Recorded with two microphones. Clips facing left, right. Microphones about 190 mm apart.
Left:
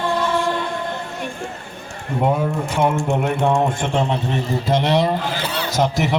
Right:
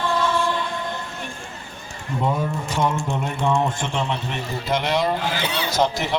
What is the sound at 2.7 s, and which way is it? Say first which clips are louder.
Music: left 4 dB; 60° left (ahead or behind).